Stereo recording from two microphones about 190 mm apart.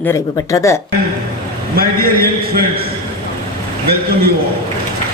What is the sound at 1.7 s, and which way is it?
Speech, 50° right (ahead or behind).